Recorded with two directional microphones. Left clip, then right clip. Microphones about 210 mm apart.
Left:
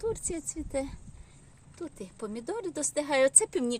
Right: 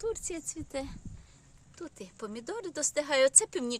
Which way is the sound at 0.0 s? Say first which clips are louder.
Left 2 dB; centre (ahead or behind).